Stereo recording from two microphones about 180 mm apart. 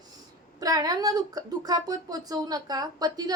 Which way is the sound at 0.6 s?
20° right (ahead or behind).